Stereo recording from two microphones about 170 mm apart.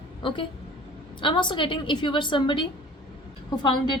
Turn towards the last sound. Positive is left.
turn(degrees=25)  # may be behind; listen again after turning